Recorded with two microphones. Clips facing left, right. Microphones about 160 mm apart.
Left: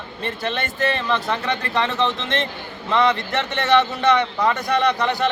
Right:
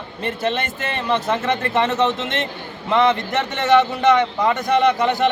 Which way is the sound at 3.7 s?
20° right (ahead or behind).